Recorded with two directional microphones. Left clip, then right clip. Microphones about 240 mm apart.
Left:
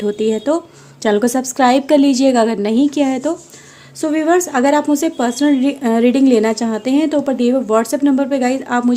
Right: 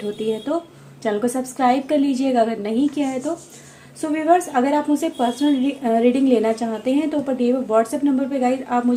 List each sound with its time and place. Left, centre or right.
0.2 s a woman's voice: left